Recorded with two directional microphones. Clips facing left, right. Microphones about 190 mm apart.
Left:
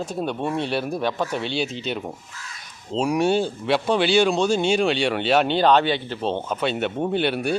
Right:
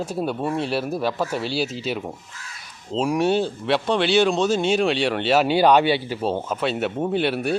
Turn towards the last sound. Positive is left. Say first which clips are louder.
# even
turn(degrees=0)  # may be behind; listen again after turning